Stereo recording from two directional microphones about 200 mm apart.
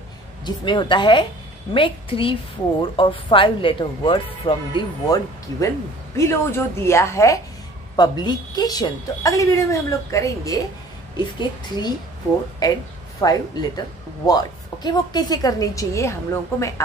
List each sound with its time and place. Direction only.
0.5 s a woman's voice: 25° left (ahead or behind)